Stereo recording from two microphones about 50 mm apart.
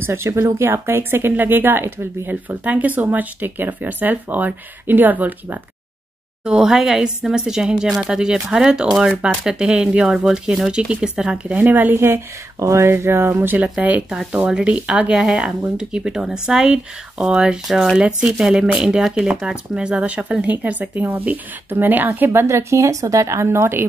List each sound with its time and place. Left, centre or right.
0.0 s speech: right
0.7 s speech: right
2.6 s speech: right
6.6 s speech: centre
11.6 s speech: right
12.5 s speech: right
12.9 s speech: right
13.6 s speech: right
17.6 s speech: centre
17.9 s speech: centre; by 22.5 s right
22.5 s speech: right